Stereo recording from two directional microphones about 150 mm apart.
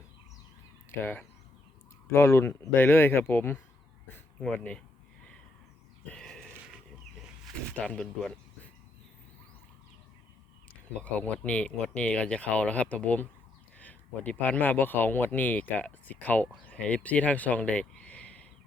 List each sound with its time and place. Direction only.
0.9 s speech: 15° left (ahead or behind)
6.1 s a sound: 5° left (ahead or behind)
7.7 s speech: 10° left (ahead or behind)
11.0 s speech: 10° left (ahead or behind)